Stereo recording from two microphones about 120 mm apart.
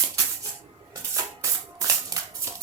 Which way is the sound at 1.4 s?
25° right (ahead or behind).